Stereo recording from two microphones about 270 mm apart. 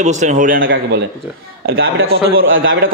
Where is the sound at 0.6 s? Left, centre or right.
Right.